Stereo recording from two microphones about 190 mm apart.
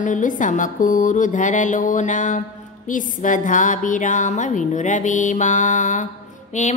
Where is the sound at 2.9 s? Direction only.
45° left (ahead or behind).